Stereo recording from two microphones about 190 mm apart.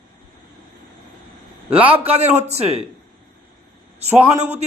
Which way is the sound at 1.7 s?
10° right (ahead or behind).